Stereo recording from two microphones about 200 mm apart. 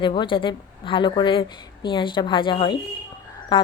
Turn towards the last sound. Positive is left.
turn(degrees=25)  # may be behind; listen again after turning